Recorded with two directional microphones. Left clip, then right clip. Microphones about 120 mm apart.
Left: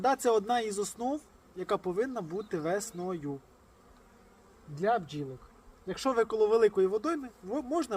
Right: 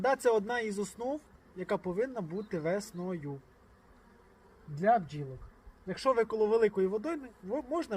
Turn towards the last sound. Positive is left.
turn(degrees=30)  # may be behind; listen again after turning